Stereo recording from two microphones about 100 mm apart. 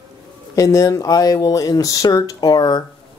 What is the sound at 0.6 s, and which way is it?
Speech, 35° left (ahead or behind).